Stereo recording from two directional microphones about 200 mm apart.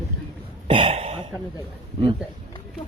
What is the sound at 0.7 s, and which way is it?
Throat clearing, 30° right (ahead or behind).